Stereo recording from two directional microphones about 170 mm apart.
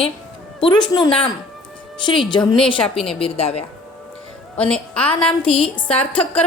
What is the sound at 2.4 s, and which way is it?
Speech, 5° left (ahead or behind).